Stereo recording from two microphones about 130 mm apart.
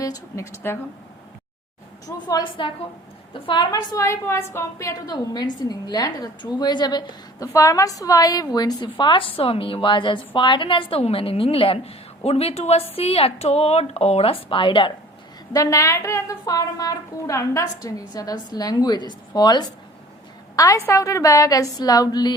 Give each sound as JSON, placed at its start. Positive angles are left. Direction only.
{"t": 0.0, "sound": "a woman's voice", "side_deg": 25}
{"t": 2.0, "sound": "a woman's voice", "side_deg": 30}
{"t": 15.5, "sound": "a woman's voice", "side_deg": 25}